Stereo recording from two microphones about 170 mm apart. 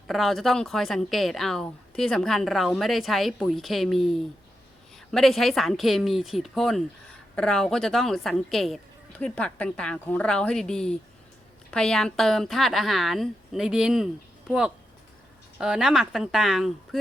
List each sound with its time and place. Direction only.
0.1 s speech: centre (ahead or behind)